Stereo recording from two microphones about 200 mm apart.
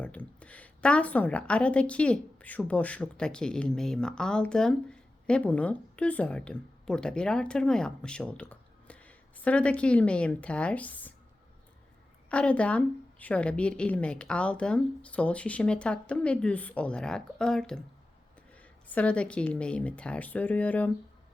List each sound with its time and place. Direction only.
0.0 s a woman's voice: 5° left (ahead or behind)
12.3 s a woman's voice: 5° left (ahead or behind)